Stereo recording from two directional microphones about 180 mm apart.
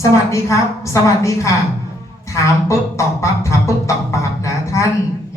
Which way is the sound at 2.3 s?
15° left (ahead or behind).